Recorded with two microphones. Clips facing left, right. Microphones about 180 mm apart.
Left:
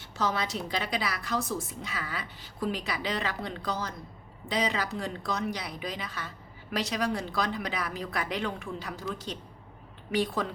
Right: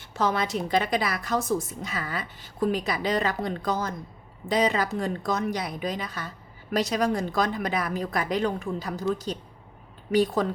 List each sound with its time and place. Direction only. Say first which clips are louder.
0.1 s a woman's voice: right 5 dB; 55° right (ahead or behind)